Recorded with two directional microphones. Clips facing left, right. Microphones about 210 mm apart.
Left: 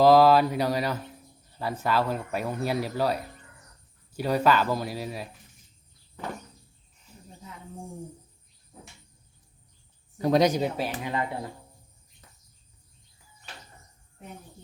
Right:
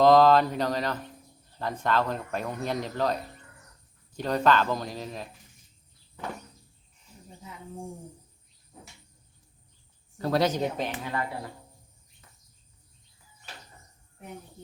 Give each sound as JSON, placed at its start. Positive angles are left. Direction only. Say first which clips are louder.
{"t": 0.0, "sound": "speech", "louder": "left 1 dB", "side_deg": 5}
{"t": 10.2, "sound": "speech", "louder": "left 3 dB", "side_deg": 15}
{"t": 11.0, "sound": "speech", "louder": "left 2 dB", "side_deg": 20}